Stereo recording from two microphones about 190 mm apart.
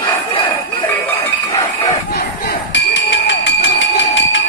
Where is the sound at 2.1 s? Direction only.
55° left (ahead or behind).